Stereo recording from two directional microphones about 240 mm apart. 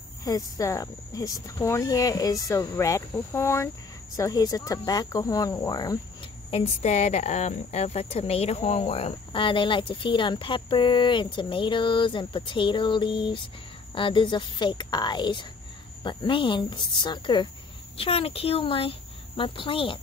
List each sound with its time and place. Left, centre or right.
0.2 s speech: centre
6.5 s a woman's voice: left